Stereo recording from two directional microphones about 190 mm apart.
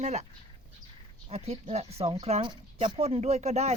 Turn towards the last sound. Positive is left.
turn(degrees=-35)  # may be behind; listen again after turning